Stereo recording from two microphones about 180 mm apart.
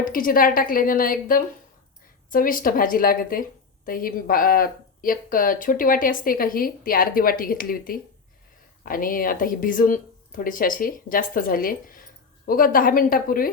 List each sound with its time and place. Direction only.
0.0 s speech: 50° left (ahead or behind)